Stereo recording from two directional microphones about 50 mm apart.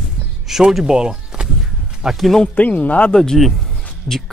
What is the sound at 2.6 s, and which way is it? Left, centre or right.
Speech, left.